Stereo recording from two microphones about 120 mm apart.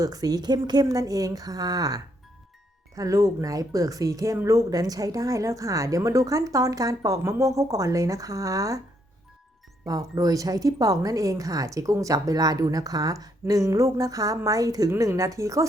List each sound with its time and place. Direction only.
0.0 s a woman's voice: 30° right (ahead or behind)
9.8 s a woman's voice: 30° right (ahead or behind)